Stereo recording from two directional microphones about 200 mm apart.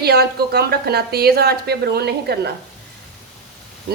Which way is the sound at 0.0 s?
55° right (ahead or behind).